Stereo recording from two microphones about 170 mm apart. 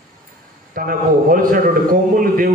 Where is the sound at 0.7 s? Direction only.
55° right (ahead or behind).